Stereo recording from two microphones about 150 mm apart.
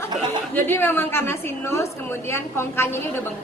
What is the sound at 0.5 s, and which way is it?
A woman's voice, 15° left (ahead or behind).